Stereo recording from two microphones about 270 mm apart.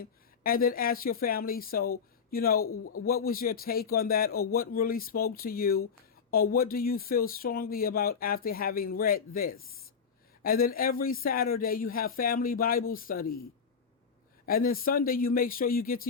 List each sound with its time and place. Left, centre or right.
0.0 s speech: left
2.6 s a man's voice: left
3.2 s speech: left
14.4 s speech: left